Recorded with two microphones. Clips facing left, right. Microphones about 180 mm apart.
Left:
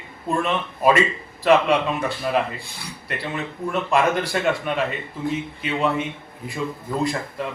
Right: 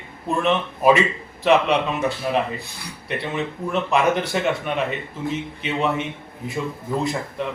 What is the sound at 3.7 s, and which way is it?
Speech, centre (ahead or behind).